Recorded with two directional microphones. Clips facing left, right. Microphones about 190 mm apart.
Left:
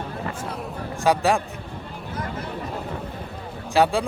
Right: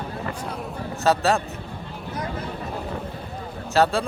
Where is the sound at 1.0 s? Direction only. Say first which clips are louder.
Even; 15° left (ahead or behind).